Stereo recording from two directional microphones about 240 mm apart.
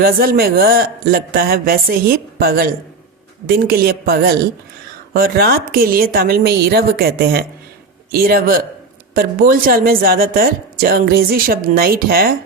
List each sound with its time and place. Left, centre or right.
0.0 s speech: right